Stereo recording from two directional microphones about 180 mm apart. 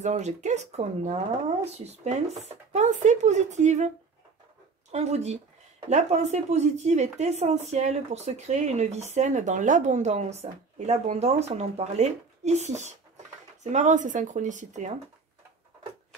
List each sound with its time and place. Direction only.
0.0 s speech: 40° right (ahead or behind)
4.9 s speech: 35° right (ahead or behind)